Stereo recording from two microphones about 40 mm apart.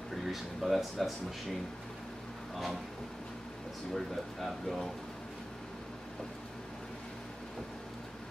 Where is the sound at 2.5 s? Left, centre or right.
Centre.